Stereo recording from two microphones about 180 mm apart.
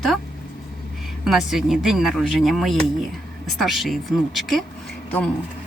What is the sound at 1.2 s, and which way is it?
Speech, centre (ahead or behind).